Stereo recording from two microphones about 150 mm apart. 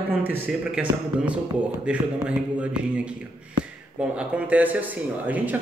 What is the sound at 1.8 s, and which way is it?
Speech, 10° right (ahead or behind).